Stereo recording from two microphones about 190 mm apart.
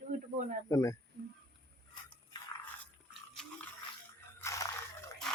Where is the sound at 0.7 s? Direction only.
15° left (ahead or behind).